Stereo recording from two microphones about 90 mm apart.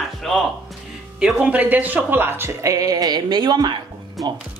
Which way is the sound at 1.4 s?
15° right (ahead or behind).